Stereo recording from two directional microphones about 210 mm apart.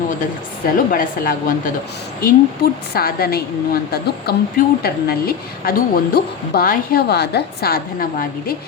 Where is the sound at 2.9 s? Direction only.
45° left (ahead or behind).